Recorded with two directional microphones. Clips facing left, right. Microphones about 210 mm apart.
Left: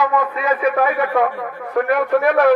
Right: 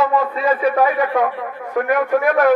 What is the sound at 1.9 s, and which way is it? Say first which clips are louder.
Speech: even; 45° right (ahead or behind).